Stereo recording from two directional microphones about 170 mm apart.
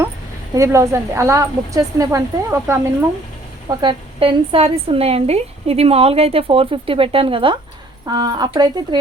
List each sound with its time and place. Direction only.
0.5 s a woman's voice: 15° right (ahead or behind)
3.7 s a woman's voice: 25° right (ahead or behind)